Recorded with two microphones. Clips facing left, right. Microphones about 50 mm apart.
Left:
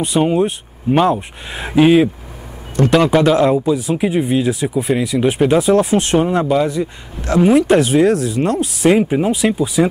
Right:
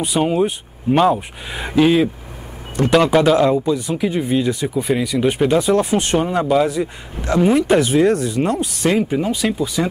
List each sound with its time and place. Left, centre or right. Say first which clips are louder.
0.0 s speech: left 2 dB; centre
1.8 s speech: left 3 dB; centre
2.8 s speech: left 1 dB; centre